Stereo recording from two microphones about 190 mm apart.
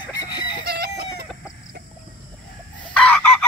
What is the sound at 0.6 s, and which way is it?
Chicken, 55° right (ahead or behind).